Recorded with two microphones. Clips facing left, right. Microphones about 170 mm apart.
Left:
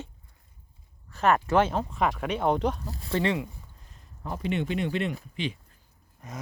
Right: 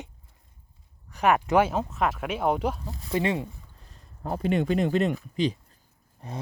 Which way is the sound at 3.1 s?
20° right (ahead or behind).